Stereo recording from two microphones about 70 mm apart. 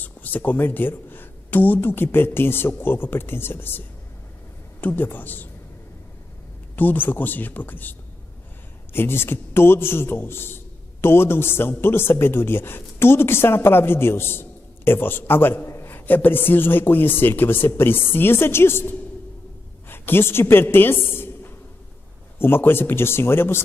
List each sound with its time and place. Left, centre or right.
0.0 s a woman's voice: left
6.7 s speech: left
8.9 s a man's voice: left
22.4 s a man's voice: left